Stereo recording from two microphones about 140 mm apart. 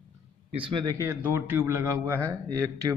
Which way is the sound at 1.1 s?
15° right (ahead or behind).